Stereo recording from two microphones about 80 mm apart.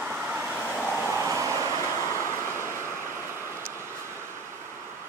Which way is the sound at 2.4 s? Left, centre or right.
Right.